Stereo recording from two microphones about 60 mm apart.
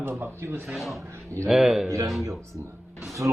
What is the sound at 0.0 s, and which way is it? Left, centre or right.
Speech, right.